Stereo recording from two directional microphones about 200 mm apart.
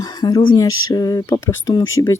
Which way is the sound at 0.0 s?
20° left (ahead or behind).